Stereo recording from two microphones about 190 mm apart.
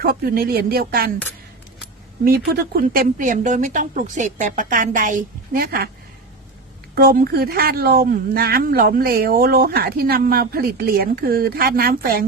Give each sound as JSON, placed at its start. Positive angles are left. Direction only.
{"t": 0.0, "sound": "speech", "side_deg": -50}
{"t": 2.2, "sound": "speech", "side_deg": -50}
{"t": 6.9, "sound": "speech", "side_deg": -50}